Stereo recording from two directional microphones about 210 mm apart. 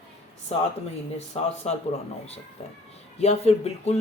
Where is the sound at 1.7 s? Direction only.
30° left (ahead or behind).